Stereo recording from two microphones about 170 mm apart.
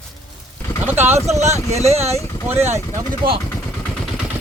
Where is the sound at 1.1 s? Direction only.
40° right (ahead or behind).